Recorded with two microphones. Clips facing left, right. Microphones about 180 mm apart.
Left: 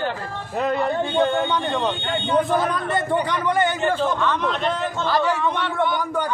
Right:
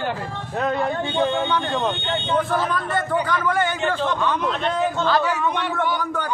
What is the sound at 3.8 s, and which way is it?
A man's voice, 5° left (ahead or behind).